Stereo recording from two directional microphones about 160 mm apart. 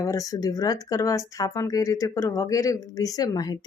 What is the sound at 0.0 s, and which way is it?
Speech, 20° left (ahead or behind).